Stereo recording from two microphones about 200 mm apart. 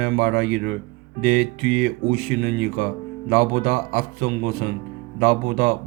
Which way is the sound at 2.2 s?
45° right (ahead or behind).